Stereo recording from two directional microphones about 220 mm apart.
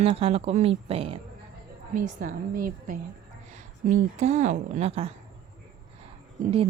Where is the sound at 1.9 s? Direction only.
40° right (ahead or behind).